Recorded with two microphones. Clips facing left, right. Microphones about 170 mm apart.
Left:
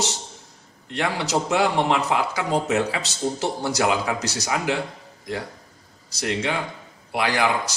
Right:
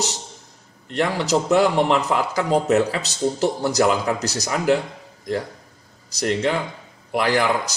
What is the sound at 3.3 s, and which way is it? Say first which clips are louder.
Speech: right 6 dB; 40° right (ahead or behind).